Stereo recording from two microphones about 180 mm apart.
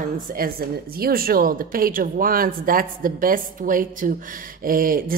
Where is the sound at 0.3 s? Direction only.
55° right (ahead or behind).